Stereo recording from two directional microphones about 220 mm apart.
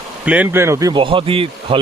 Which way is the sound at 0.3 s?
10° right (ahead or behind).